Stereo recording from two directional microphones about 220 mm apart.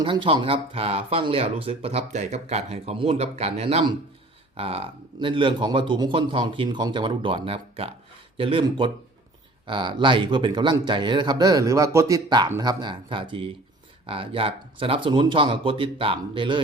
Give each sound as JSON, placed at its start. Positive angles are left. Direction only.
{"t": 0.0, "sound": "speech", "side_deg": -20}